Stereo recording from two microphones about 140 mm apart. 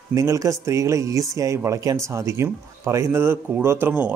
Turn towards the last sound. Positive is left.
turn(degrees=-10)  # may be behind; listen again after turning